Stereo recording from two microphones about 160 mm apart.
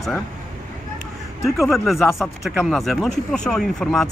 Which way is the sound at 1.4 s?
Centre (ahead or behind).